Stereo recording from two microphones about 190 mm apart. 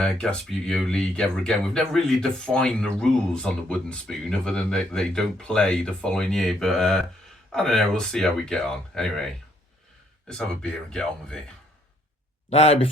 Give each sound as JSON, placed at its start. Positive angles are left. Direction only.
{"t": 0.0, "sound": "speech", "side_deg": 5}
{"t": 12.5, "sound": "speech", "side_deg": 35}